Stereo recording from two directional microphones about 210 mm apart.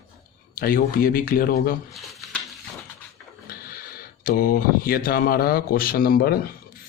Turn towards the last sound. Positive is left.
turn(degrees=45)  # may be behind; listen again after turning